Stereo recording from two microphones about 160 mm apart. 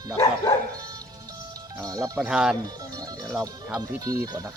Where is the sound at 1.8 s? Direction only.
20° right (ahead or behind).